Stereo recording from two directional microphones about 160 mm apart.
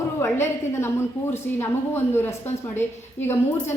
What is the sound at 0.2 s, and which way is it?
A woman's voice, 15° left (ahead or behind).